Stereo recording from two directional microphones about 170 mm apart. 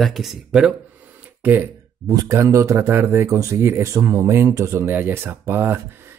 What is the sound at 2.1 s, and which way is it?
Speech, 20° right (ahead or behind).